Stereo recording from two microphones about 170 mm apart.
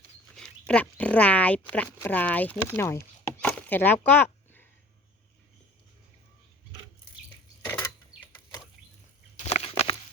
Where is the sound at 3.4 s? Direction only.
10° left (ahead or behind).